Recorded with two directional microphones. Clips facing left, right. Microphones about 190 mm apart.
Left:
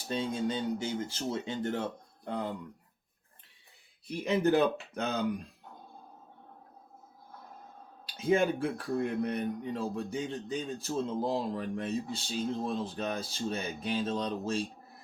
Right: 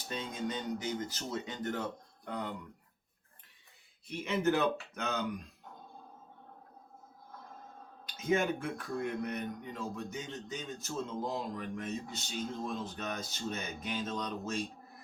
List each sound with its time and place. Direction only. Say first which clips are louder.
0.1 s speech: left 6 dB; 30° left (ahead or behind)
4.0 s speech: left 3 dB; 35° left (ahead or behind)
8.0 s speech: left 4 dB; 30° left (ahead or behind)